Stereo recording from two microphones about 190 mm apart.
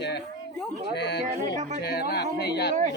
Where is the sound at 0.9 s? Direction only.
60° left (ahead or behind).